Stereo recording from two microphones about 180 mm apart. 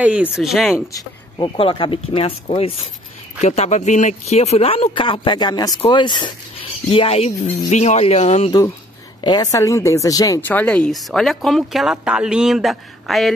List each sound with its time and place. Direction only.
0.0 s speech: 5° right (ahead or behind)
0.7 s speech: 20° left (ahead or behind)
1.6 s speech: 30° left (ahead or behind)
8.5 s speech: 20° left (ahead or behind); by 13.3 s centre (ahead or behind)